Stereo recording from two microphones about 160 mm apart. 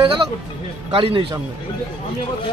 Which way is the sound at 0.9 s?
35° right (ahead or behind).